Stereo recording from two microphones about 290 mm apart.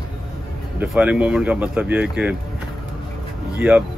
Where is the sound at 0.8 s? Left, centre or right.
Centre.